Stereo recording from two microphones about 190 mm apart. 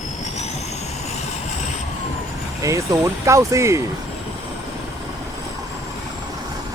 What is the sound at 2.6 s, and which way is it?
Speech, 15° right (ahead or behind).